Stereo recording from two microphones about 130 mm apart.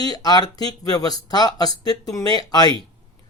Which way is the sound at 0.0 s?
30° left (ahead or behind).